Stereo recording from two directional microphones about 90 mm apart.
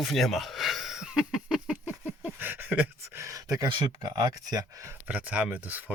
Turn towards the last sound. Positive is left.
turn(degrees=-20)  # may be behind; listen again after turning